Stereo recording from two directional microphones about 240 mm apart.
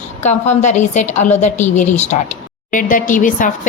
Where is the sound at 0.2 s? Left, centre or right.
Left.